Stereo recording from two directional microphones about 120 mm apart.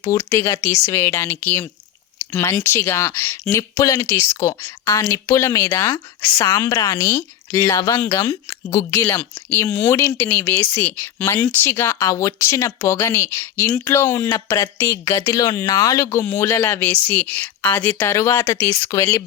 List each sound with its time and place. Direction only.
0.0 s speech: 25° left (ahead or behind)
3.6 s speech: 30° left (ahead or behind)